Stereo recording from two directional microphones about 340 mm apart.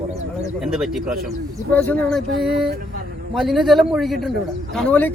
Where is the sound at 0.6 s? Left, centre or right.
Centre.